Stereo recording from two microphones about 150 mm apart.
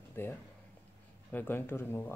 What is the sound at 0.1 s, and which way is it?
Speech, 15° left (ahead or behind).